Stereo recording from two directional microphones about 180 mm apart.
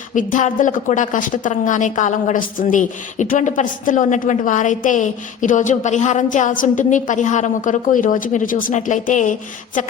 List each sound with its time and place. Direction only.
0.1 s a woman's voice: 45° left (ahead or behind)